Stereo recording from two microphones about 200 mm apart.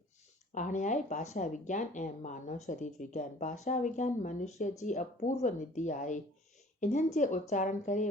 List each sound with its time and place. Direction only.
0.5 s speech: 40° left (ahead or behind)